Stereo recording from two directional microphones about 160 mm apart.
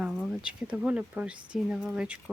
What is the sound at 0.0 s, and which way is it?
Speech, centre (ahead or behind).